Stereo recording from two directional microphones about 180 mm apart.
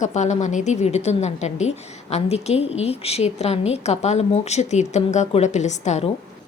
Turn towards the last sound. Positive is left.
turn(degrees=40)  # may be behind; listen again after turning